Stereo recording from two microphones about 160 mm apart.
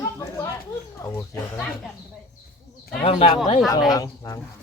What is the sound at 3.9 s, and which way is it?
Speech, 20° left (ahead or behind).